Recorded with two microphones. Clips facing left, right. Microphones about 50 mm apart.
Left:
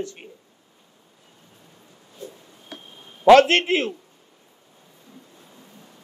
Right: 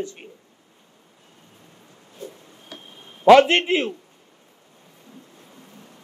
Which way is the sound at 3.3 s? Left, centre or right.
Centre.